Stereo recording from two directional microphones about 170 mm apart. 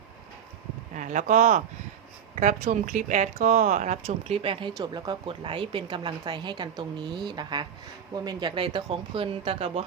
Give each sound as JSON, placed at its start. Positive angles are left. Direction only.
{"t": 0.9, "sound": "speech", "side_deg": -45}